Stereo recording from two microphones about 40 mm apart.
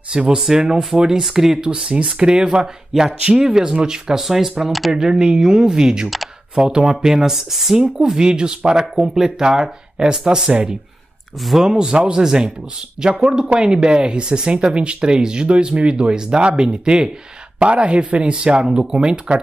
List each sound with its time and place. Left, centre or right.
0.1 s speech: right
1.7 s speech: right; by 7.8 s centre
8.2 s speech: right